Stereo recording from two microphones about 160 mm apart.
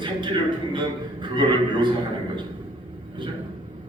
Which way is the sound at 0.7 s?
30° right (ahead or behind).